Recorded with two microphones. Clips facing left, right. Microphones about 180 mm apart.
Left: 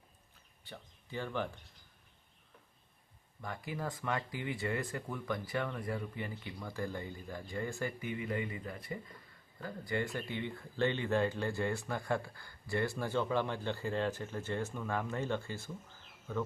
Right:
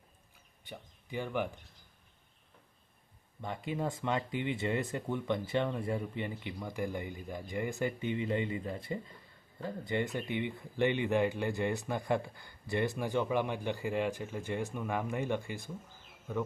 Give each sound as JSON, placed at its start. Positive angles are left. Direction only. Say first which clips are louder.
{"t": 0.6, "sound": "speech", "louder": "right 3 dB", "side_deg": -15}
{"t": 3.4, "sound": "speech", "louder": "right 4 dB", "side_deg": -20}